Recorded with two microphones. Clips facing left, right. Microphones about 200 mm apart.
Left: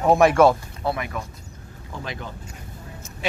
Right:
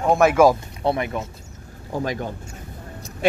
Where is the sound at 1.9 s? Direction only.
45° right (ahead or behind).